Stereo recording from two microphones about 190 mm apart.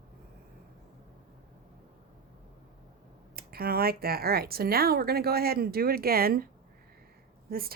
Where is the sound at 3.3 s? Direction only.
55° right (ahead or behind).